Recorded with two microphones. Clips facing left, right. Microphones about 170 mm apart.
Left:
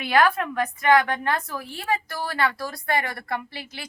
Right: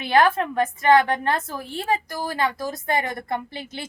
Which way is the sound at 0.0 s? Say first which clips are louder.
Right 2 dB; 25° right (ahead or behind).